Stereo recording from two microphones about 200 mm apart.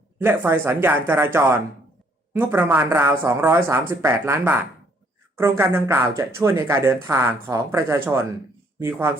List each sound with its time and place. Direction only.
0.2 s speech: 10° right (ahead or behind)